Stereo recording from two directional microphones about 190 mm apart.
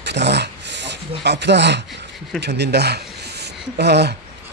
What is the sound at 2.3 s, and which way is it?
Speech, 60° right (ahead or behind).